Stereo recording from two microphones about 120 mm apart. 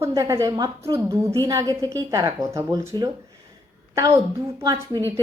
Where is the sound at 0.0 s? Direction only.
30° right (ahead or behind).